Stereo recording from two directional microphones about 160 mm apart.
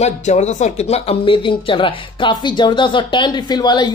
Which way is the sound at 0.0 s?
45° left (ahead or behind).